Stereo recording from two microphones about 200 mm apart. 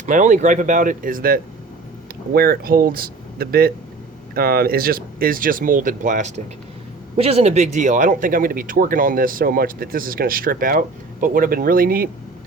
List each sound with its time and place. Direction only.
0.0 s speech: 40° right (ahead or behind)